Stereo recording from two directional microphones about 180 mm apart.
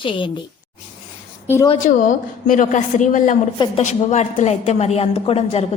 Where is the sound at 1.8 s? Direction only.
45° left (ahead or behind).